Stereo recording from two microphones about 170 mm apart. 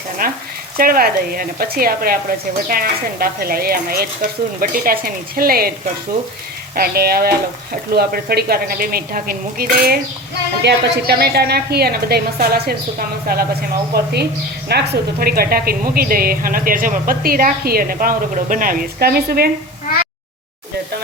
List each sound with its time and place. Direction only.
0.2 s speech: 60° right (ahead or behind)
6.7 s speech: 65° right (ahead or behind)
10.6 s a woman's voice: 80° right